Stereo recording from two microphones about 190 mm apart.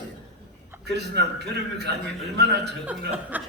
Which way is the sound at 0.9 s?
60° right (ahead or behind).